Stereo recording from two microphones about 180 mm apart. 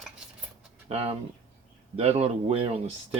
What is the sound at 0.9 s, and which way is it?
Speech, 35° right (ahead or behind).